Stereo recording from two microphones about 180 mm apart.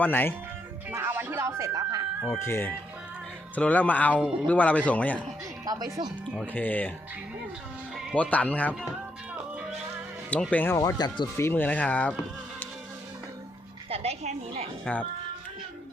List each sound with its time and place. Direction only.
0.0 s speech: 10° left (ahead or behind)
0.9 s music: 10° right (ahead or behind)
2.4 s speech: 10° left (ahead or behind)
5.6 s speech: 25° right (ahead or behind)
6.3 s speech: 10° left (ahead or behind)
8.1 s speech: 10° left (ahead or behind)
10.2 s speech: 10° left (ahead or behind)
13.9 s a sound: 35° right (ahead or behind)